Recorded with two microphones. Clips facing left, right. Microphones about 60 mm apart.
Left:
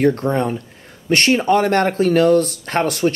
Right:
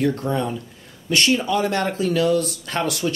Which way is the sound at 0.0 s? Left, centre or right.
Left.